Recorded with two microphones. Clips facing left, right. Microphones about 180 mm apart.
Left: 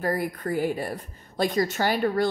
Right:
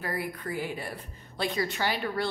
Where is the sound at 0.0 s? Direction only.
45° left (ahead or behind).